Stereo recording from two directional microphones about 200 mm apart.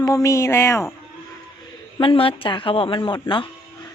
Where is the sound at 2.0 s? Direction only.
25° left (ahead or behind).